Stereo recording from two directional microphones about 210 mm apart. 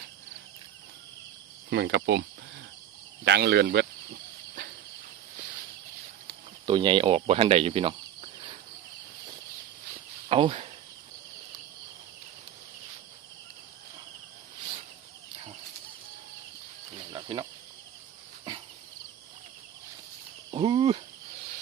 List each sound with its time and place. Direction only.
1.7 s speech: 55° right (ahead or behind)
3.2 s a sound: 50° right (ahead or behind)
6.2 s cricket: 25° right (ahead or behind)
10.2 s speech: 25° right (ahead or behind)
17.1 s cricket: 20° right (ahead or behind)
20.5 s a sound: 25° right (ahead or behind)